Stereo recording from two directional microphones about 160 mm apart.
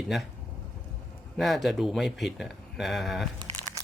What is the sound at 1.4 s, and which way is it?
Speech, centre (ahead or behind).